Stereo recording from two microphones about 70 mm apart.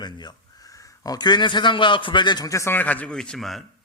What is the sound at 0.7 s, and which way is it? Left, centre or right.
Speech, left.